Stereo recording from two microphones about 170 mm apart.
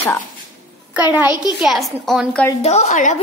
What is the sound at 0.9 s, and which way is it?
A child's voice, 10° right (ahead or behind).